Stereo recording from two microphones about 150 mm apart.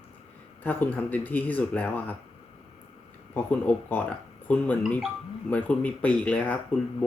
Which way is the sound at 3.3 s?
10° left (ahead or behind).